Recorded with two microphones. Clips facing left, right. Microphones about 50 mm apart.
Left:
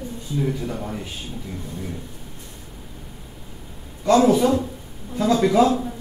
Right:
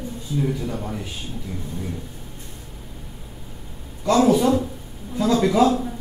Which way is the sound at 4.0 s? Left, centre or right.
Centre.